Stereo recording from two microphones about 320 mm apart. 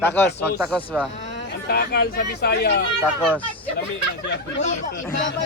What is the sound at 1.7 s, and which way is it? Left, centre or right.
Speech, left.